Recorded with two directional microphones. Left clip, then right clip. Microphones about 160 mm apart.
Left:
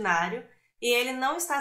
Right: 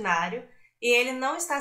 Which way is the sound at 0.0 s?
20° left (ahead or behind).